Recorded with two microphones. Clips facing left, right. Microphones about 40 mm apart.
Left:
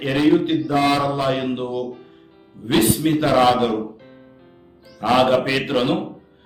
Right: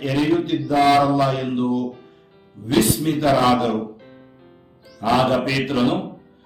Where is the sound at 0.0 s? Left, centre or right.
Left.